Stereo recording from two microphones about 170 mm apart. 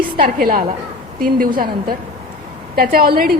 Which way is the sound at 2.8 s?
60° right (ahead or behind).